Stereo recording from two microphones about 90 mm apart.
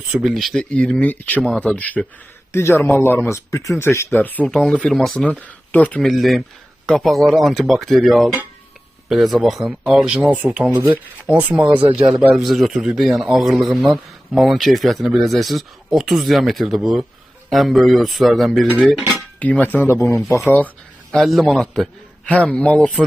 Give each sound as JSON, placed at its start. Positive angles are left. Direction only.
{"t": 0.1, "sound": "speech", "side_deg": -5}
{"t": 0.6, "sound": "a man's voice", "side_deg": 10}
{"t": 2.5, "sound": "speech", "side_deg": 30}
{"t": 4.4, "sound": "a man's voice", "side_deg": 5}
{"t": 6.0, "sound": "speech", "side_deg": 0}
{"t": 10.2, "sound": "speech", "side_deg": -15}
{"t": 12.3, "sound": "speech", "side_deg": 0}
{"t": 19.4, "sound": "speech", "side_deg": 20}
{"t": 21.1, "sound": "speech", "side_deg": 0}
{"t": 22.3, "sound": "a man's voice", "side_deg": 15}